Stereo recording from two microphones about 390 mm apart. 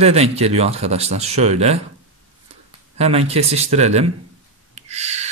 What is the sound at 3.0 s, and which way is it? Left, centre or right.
Speech, centre.